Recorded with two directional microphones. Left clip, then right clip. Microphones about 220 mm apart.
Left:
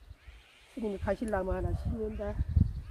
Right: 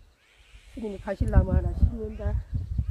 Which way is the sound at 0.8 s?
15° left (ahead or behind).